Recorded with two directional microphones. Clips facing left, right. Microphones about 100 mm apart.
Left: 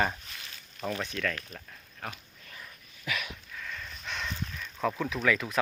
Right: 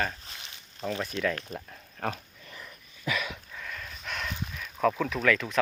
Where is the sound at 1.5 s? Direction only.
40° right (ahead or behind).